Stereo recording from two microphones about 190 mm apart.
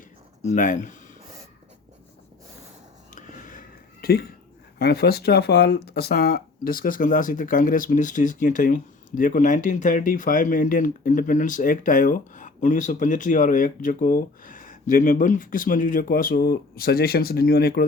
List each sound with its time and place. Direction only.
0.4 s speech: 40° left (ahead or behind)
3.2 s a sound: 40° left (ahead or behind)
4.0 s speech: 55° left (ahead or behind)